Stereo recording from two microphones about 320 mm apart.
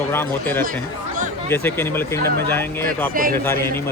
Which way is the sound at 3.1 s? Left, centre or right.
Right.